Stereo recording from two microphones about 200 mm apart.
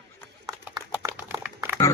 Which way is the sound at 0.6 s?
10° right (ahead or behind).